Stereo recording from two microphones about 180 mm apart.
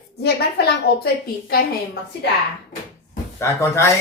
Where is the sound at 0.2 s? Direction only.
60° left (ahead or behind).